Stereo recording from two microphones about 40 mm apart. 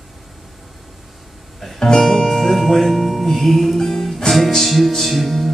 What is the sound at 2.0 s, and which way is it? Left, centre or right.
Music, centre.